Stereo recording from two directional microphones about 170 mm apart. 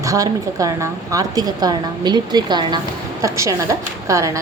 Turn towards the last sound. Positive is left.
turn(degrees=-20)  # may be behind; listen again after turning